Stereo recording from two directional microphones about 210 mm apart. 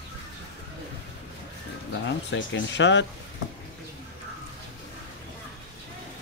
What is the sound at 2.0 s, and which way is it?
Speech, 60° left (ahead or behind).